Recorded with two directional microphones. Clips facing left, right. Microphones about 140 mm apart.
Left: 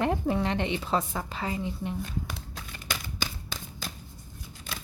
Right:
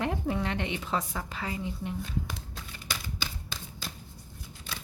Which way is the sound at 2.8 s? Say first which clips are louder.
Left 2 dB; 50° left (ahead or behind).